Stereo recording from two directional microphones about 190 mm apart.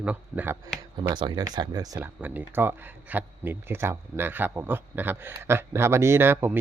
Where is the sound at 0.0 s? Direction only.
10° right (ahead or behind).